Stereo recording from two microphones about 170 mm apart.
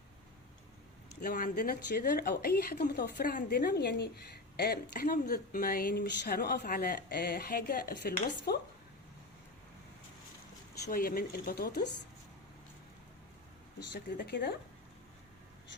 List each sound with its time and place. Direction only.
1.2 s a woman's voice: 50° left (ahead or behind)
10.8 s a woman's voice: 60° left (ahead or behind)
13.9 s speech: 80° left